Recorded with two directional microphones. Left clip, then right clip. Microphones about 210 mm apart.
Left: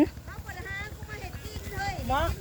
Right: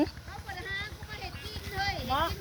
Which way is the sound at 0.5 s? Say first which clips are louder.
Right 1 dB; 45° left (ahead or behind).